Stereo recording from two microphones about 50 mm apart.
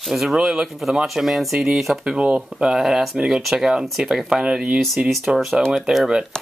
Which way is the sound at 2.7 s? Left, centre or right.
Centre.